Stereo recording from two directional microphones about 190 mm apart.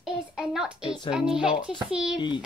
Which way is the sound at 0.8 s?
25° left (ahead or behind).